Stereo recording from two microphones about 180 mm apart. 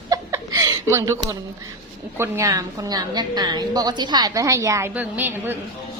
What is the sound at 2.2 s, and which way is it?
A woman's voice, 15° right (ahead or behind).